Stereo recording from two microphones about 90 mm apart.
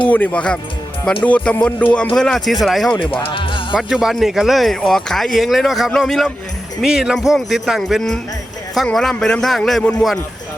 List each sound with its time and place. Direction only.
0.1 s music: 15° left (ahead or behind)
2.1 s speech: 5° left (ahead or behind)
3.0 s speech: 75° left (ahead or behind)
3.7 s speech: 5° right (ahead or behind)